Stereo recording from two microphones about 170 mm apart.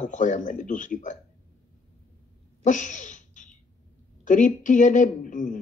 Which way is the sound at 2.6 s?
45° left (ahead or behind).